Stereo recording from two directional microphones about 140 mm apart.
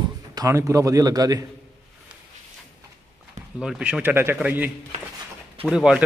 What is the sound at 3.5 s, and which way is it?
A man's voice, 5° right (ahead or behind).